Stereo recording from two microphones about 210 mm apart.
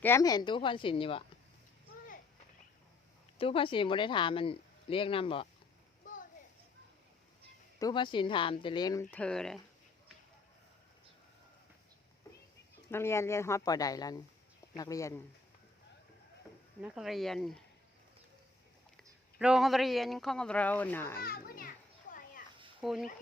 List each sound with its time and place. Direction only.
0.0 s speech: 15° left (ahead or behind)
3.3 s speech: 25° left (ahead or behind)
7.8 s speech: 20° left (ahead or behind); by 9.6 s 5° left (ahead or behind)
12.9 s speech: 10° left (ahead or behind)
16.8 s speech: centre (ahead or behind)
19.4 s speech: 5° right (ahead or behind)
21.2 s a child's voice: 45° left (ahead or behind)
22.8 s speech: centre (ahead or behind)